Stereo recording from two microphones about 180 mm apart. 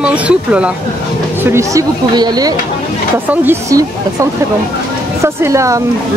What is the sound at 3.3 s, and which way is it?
Speech, 10° right (ahead or behind).